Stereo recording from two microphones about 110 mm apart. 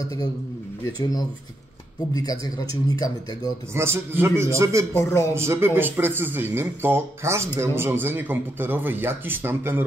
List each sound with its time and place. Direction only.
2.1 s speech: 35° left (ahead or behind)
3.7 s speech: 25° right (ahead or behind)
4.9 s speech: 25° left (ahead or behind)
5.3 s speech: 25° right (ahead or behind)